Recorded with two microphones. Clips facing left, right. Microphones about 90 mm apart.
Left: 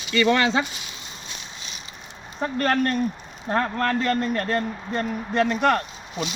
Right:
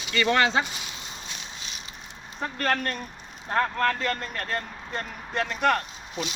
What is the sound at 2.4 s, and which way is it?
Speech, 10° left (ahead or behind).